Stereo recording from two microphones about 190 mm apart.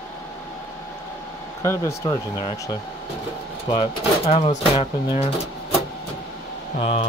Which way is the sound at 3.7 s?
30° left (ahead or behind).